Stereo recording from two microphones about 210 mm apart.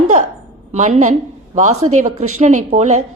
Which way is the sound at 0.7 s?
35° right (ahead or behind).